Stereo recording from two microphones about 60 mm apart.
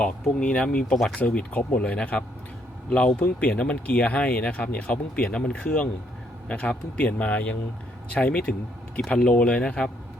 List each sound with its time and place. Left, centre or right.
0.0 s speech: centre